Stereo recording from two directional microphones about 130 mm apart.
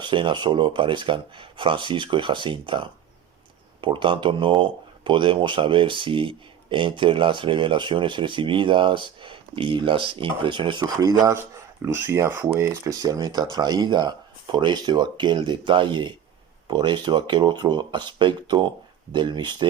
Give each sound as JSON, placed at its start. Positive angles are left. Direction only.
{"t": 0.0, "sound": "speech", "side_deg": -40}